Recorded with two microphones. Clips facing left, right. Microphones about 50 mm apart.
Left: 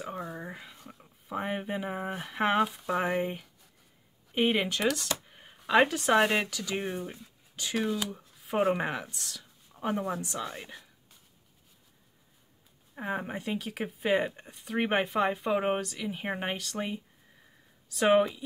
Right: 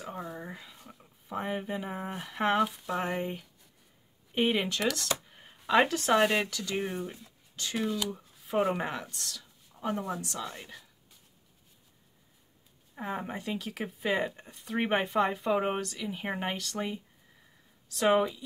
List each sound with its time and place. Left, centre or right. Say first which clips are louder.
0.0 s a sound: left 2 dB; centre
1.4 s speech: left 1 dB; centre
4.4 s speech: left 1 dB; centre
7.1 s a sound: even; centre
7.8 s speech: right 2 dB; centre
9.8 s speech: left 2 dB; left
12.9 s speech: left 2 dB; centre